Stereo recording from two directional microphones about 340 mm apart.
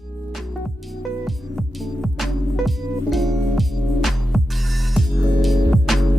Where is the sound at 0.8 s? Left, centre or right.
Centre.